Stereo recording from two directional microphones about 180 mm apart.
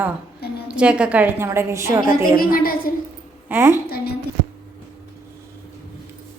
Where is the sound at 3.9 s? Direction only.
60° left (ahead or behind).